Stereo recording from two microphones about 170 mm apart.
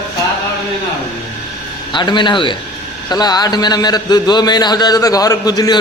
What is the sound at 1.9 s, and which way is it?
A man's voice, 25° left (ahead or behind).